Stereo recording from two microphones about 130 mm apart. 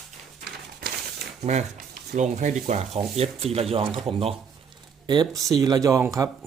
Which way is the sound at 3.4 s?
50° right (ahead or behind).